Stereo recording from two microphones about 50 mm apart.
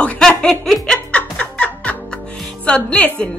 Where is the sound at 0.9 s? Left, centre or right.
Left.